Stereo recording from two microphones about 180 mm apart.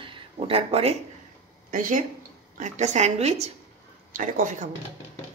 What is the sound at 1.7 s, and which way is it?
Speech, 45° right (ahead or behind).